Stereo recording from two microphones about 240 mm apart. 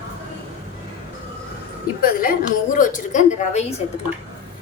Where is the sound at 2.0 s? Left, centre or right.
Left.